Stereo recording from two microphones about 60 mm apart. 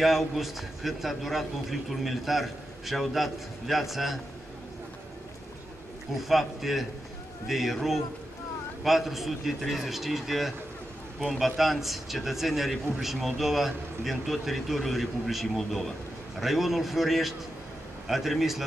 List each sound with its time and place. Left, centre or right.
0.0 s a man's voice: centre
6.2 s a man's voice: centre